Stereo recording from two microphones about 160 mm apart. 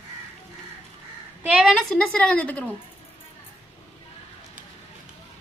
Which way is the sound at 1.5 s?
Centre (ahead or behind).